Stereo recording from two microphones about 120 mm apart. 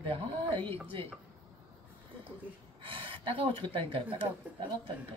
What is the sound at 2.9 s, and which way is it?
Speech, 45° right (ahead or behind).